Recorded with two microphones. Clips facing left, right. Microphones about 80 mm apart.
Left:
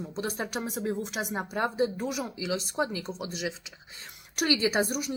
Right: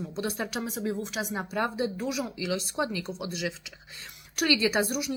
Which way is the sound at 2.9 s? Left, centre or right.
Left.